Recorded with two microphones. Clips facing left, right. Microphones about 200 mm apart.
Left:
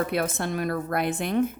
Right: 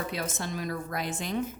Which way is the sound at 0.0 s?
60° left (ahead or behind).